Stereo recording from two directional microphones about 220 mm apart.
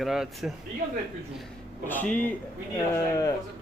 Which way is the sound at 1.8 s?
10° left (ahead or behind).